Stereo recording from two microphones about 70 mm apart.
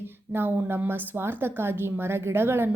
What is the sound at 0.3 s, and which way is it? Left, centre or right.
A woman's voice, right.